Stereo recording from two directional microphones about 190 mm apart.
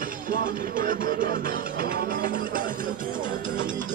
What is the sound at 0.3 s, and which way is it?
Music, 45° right (ahead or behind).